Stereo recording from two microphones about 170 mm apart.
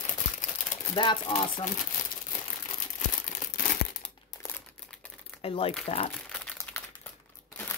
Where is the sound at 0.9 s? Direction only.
25° left (ahead or behind).